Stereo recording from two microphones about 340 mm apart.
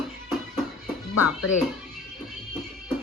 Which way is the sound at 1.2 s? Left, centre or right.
Left.